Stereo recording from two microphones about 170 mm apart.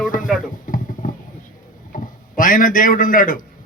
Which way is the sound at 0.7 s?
55° left (ahead or behind).